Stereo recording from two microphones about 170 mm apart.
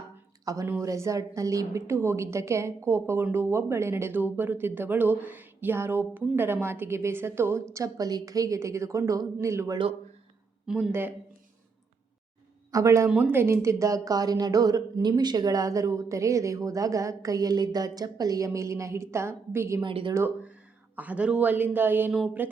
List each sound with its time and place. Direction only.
0.4 s a woman's voice: 20° right (ahead or behind)
10.7 s speech: 5° right (ahead or behind)
12.7 s a woman's voice: 15° right (ahead or behind)
19.8 s a woman's voice: 30° right (ahead or behind)
20.1 s a woman's voice: 10° right (ahead or behind)